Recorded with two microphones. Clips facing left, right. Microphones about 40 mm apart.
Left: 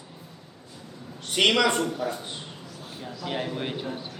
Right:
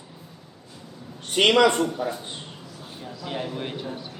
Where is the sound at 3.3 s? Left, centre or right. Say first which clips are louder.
Even; centre.